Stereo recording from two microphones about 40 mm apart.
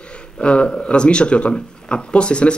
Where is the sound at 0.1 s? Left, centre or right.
Left.